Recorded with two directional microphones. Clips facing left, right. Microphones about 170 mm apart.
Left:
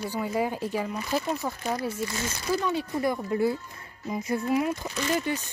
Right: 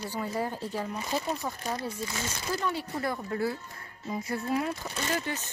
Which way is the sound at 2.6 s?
15° left (ahead or behind).